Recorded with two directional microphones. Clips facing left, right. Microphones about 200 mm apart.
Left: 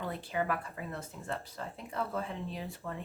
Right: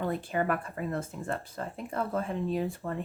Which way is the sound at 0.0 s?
50° right (ahead or behind).